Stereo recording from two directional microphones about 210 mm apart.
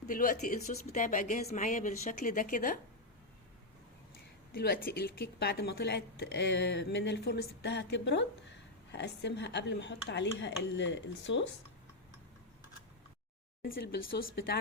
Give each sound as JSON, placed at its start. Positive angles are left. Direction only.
{"t": 0.1, "sound": "speech", "side_deg": 40}
{"t": 4.5, "sound": "speech", "side_deg": 50}
{"t": 13.7, "sound": "speech", "side_deg": 45}